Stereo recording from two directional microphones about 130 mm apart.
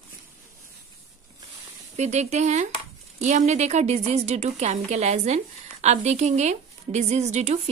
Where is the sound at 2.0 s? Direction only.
60° right (ahead or behind).